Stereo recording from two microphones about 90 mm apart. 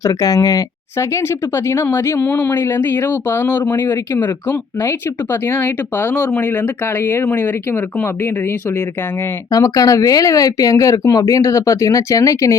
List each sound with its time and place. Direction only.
0.0 s speech: 40° left (ahead or behind)
9.5 s speech: 40° left (ahead or behind)